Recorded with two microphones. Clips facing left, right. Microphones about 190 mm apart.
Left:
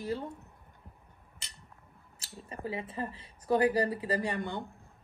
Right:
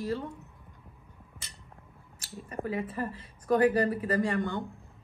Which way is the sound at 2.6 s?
20° left (ahead or behind).